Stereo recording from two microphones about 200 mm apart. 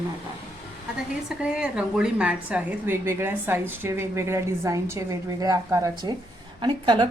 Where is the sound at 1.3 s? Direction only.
5° right (ahead or behind); by 7.1 s 20° right (ahead or behind).